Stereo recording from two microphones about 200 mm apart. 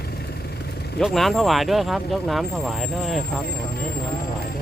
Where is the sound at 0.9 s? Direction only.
Centre (ahead or behind).